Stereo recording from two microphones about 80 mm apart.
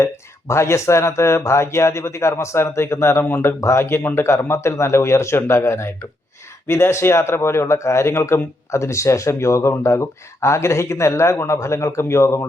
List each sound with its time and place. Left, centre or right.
0.0 s speech: left